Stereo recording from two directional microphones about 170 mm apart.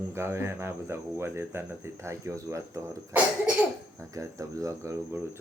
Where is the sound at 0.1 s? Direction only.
15° right (ahead or behind).